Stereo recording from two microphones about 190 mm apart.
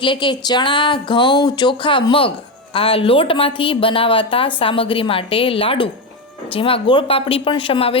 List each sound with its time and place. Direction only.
0.0 s speech: 25° left (ahead or behind)